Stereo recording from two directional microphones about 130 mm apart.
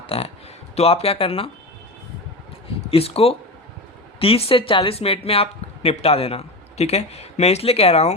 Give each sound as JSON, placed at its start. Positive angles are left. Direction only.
{"t": 0.1, "sound": "speech", "side_deg": 50}
{"t": 2.8, "sound": "speech", "side_deg": 50}